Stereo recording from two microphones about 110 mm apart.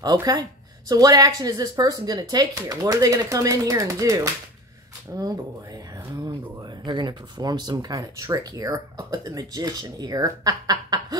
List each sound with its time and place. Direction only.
0.2 s speech: 35° right (ahead or behind)
6.2 s speech: 40° right (ahead or behind)